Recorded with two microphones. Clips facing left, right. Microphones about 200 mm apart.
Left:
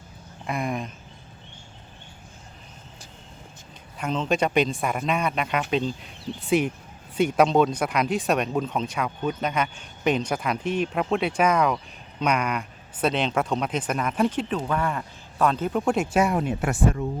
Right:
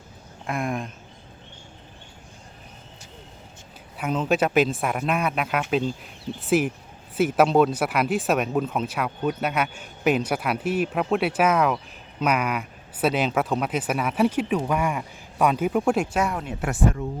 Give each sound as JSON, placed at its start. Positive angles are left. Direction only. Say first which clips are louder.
{"t": 0.4, "sound": "speech", "louder": "right 1 dB", "side_deg": 0}
{"t": 3.9, "sound": "speech", "louder": "right 2 dB", "side_deg": -5}
{"t": 16.3, "sound": "speech", "louder": "left 4 dB", "side_deg": 15}